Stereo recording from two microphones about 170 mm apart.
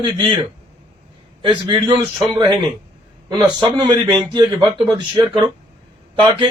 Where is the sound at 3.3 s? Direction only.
25° right (ahead or behind).